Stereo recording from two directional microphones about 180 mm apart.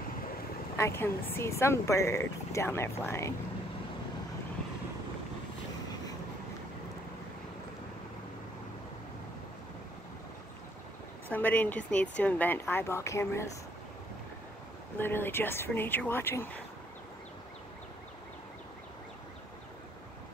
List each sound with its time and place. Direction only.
0.7 s speech: 15° left (ahead or behind)
11.3 s speech: 10° left (ahead or behind)
15.0 s speech: 10° left (ahead or behind)